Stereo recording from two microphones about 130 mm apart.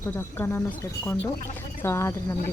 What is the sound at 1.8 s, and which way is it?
Speech, 20° left (ahead or behind).